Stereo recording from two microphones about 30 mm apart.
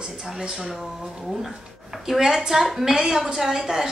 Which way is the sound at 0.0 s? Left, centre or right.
Centre.